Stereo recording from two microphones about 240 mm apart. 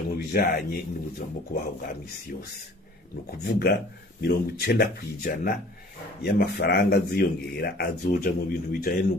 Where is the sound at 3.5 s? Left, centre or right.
Left.